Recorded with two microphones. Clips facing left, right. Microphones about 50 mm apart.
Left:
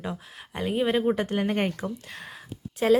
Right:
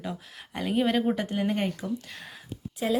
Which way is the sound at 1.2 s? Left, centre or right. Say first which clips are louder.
Left 2 dB; left.